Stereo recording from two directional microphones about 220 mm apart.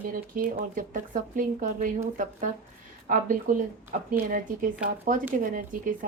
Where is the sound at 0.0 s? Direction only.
40° right (ahead or behind).